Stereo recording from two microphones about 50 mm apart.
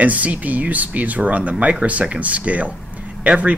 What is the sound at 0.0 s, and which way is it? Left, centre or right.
Speech, right.